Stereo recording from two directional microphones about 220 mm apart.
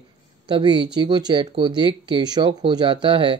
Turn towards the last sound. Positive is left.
turn(degrees=-20)  # may be behind; listen again after turning